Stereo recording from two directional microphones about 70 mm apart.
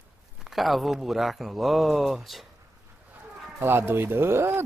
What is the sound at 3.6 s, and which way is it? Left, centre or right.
Speech, right.